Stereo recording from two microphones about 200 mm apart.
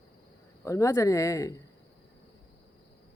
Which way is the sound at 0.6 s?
15° left (ahead or behind).